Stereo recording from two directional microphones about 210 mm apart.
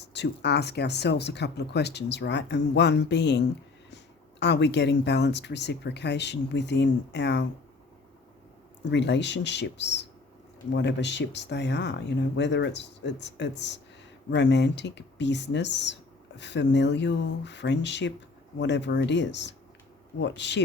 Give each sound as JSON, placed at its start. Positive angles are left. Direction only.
{"t": 0.0, "sound": "speech", "side_deg": 55}
{"t": 8.9, "sound": "speech", "side_deg": 55}